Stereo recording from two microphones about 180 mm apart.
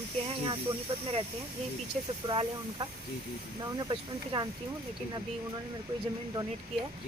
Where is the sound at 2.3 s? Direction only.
25° right (ahead or behind).